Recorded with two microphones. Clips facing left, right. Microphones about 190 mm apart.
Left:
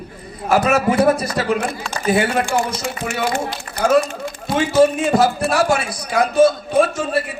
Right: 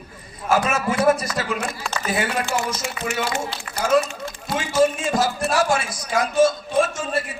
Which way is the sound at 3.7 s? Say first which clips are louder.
Left 4 dB; 55° left (ahead or behind).